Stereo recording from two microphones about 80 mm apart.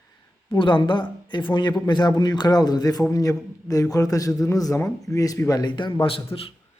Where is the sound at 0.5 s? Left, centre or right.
Left.